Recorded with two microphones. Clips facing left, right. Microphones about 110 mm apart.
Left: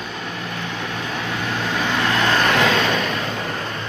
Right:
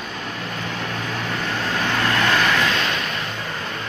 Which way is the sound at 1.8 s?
15° left (ahead or behind).